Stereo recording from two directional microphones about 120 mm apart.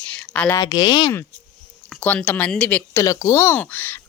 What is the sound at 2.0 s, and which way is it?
A woman's voice, 10° left (ahead or behind).